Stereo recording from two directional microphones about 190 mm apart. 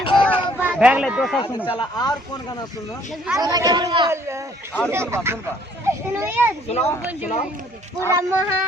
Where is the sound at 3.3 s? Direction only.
20° right (ahead or behind).